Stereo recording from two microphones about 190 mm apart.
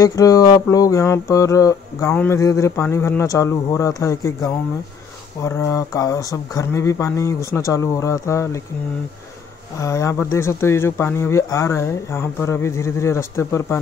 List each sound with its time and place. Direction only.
0.0 s mantra: 20° left (ahead or behind)
9.8 s mantra: 15° left (ahead or behind)